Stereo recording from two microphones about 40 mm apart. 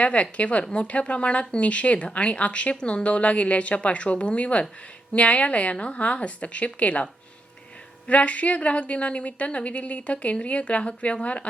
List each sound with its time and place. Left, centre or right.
0.0 s a woman's voice: left